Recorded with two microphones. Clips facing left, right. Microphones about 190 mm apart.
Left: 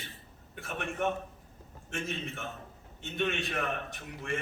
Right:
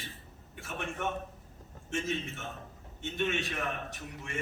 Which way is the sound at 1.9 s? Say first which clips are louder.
Right 3 dB; 60° left (ahead or behind).